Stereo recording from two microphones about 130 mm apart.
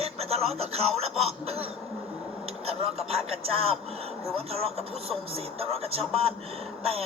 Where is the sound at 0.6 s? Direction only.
50° right (ahead or behind).